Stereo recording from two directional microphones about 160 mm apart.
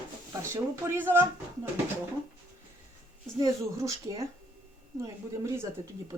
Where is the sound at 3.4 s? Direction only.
20° right (ahead or behind).